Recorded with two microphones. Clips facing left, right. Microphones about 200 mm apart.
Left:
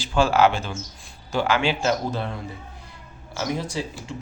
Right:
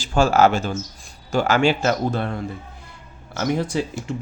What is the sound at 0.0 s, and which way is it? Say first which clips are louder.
Speech: right 2 dB; 45° right (ahead or behind).